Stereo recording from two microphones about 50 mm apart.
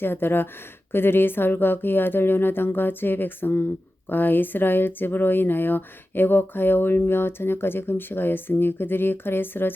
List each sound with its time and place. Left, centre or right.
0.0 s speech: left